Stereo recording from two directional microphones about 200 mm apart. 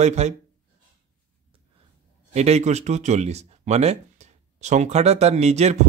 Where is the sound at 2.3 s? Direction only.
30° right (ahead or behind).